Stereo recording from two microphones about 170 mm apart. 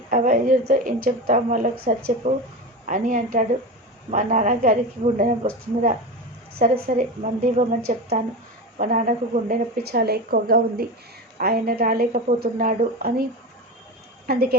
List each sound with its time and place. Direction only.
0.1 s a woman's voice: 50° right (ahead or behind)
14.3 s a woman's voice: 65° right (ahead or behind)